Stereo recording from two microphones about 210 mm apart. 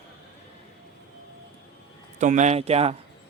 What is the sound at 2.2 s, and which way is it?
Speech, 35° right (ahead or behind).